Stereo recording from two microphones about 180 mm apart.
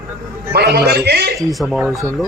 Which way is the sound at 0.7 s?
60° right (ahead or behind).